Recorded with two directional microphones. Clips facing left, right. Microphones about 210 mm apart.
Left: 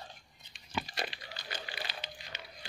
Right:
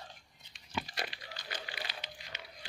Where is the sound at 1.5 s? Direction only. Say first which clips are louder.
Left 1 dB; 30° left (ahead or behind).